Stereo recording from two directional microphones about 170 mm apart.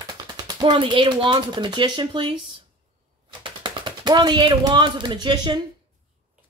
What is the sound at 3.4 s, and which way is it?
Speech, 30° right (ahead or behind).